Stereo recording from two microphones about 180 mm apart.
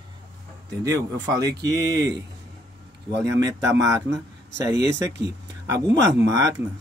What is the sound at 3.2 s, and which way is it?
Speech, 20° right (ahead or behind).